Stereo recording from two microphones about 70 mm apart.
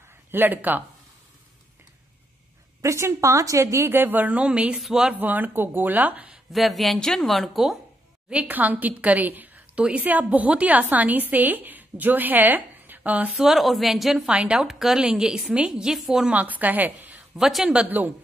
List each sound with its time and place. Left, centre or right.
0.3 s a woman's voice: right
2.8 s a woman's voice: right; by 5.1 s centre
5.1 s a woman's voice: right
6.5 s a woman's voice: centre
8.5 s a woman's voice: right
13.4 s a woman's voice: centre
14.3 s a woman's voice: centre
16.3 s a woman's voice: right
17.4 s a woman's voice: centre
17.8 s a woman's voice: right